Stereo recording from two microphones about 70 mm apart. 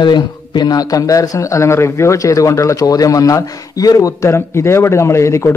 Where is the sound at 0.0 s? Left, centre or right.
Left.